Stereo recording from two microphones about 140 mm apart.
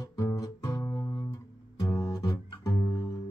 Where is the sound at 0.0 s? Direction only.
20° left (ahead or behind).